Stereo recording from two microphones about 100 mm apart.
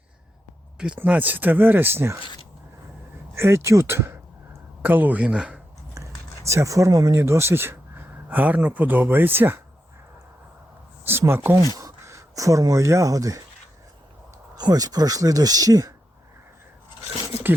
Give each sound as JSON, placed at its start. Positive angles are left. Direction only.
{"t": 0.9, "sound": "speech", "side_deg": -15}
{"t": 3.3, "sound": "speech", "side_deg": -25}
{"t": 5.9, "sound": "speech", "side_deg": -30}
{"t": 11.0, "sound": "speech", "side_deg": -25}
{"t": 14.5, "sound": "speech", "side_deg": -40}